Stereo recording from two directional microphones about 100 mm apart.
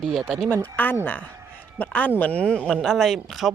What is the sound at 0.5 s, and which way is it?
Speech, 20° left (ahead or behind).